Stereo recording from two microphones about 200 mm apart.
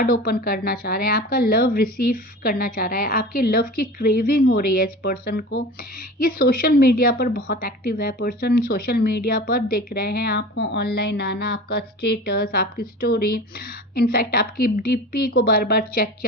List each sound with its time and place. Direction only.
0.0 s a woman's voice: 45° left (ahead or behind)